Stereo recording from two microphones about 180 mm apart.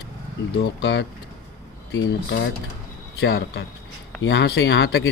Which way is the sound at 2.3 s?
90° left.